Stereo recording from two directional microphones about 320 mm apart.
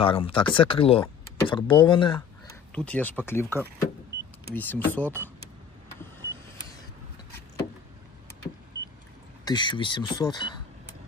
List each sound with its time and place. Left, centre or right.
0.0 s speech: centre
2.7 s speech: centre
9.4 s speech: centre